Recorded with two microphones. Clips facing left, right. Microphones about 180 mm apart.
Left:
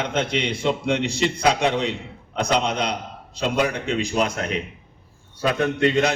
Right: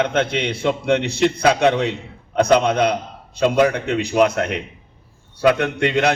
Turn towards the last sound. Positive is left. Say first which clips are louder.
# right 1 dB
turn(degrees=-70)  # may be behind; listen again after turning